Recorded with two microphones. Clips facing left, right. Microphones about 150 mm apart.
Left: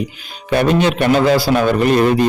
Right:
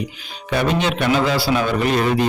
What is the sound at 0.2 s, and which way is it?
Speech, 45° left (ahead or behind).